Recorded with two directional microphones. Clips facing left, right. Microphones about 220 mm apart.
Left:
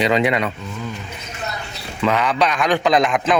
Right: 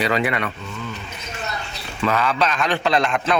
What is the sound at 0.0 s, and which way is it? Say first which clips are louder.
Speech: left 4 dB; 20° left (ahead or behind).